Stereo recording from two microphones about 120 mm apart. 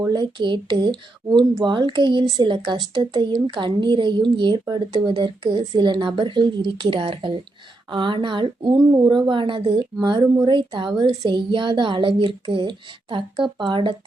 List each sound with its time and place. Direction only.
0.1 s a woman's voice: 40° right (ahead or behind)